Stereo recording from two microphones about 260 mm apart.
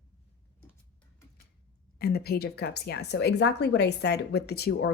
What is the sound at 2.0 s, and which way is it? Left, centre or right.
A woman's voice, left.